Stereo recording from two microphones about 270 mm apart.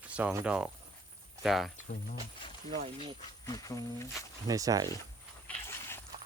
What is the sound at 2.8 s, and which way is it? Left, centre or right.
Speech, centre.